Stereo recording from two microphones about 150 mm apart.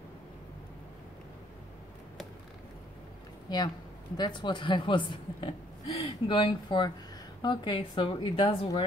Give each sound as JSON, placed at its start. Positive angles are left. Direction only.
{"t": 3.4, "sound": "speech", "side_deg": 25}